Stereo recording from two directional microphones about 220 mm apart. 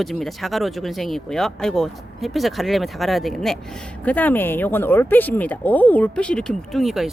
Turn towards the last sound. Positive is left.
turn(degrees=0)  # may be behind; listen again after turning